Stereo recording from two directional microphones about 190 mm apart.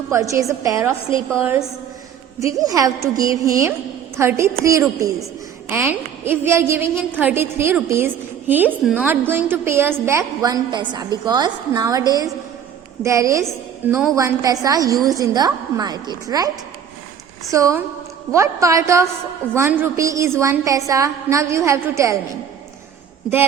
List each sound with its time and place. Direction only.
0.1 s a woman's voice: 15° right (ahead or behind)
17.5 s a woman's voice: 15° right (ahead or behind)